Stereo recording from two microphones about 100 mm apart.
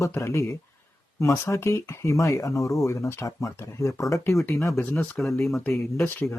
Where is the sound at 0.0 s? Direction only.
30° left (ahead or behind).